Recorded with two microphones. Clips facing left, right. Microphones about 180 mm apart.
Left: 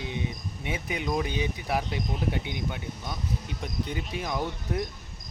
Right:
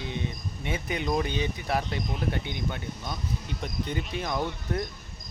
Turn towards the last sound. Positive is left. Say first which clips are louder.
# even
turn(degrees=10)  # may be behind; listen again after turning